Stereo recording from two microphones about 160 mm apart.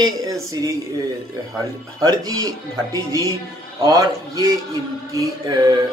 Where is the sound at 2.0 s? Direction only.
25° right (ahead or behind).